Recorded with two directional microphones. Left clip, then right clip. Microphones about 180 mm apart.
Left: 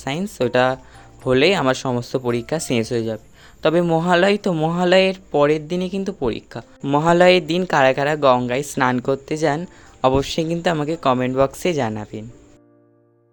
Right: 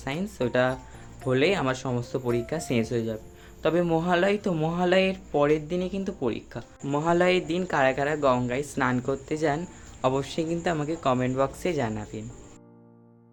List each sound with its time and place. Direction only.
0.0 s speech: 50° left (ahead or behind)